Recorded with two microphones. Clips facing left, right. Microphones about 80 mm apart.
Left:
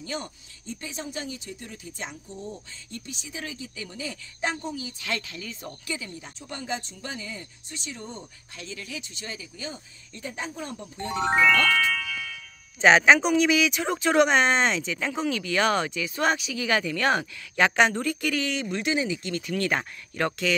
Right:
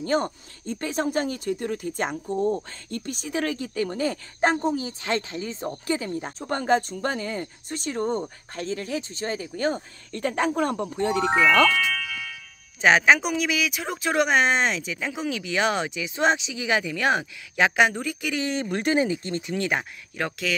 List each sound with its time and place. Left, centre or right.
0.0 s speech: right
5.9 s speech: right
12.8 s speech: centre
18.4 s speech: right
18.7 s speech: right
19.5 s speech: centre